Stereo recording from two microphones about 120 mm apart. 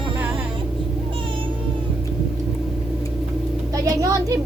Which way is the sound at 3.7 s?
30° right (ahead or behind).